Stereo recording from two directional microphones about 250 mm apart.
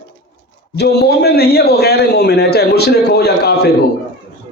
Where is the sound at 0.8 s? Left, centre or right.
Left.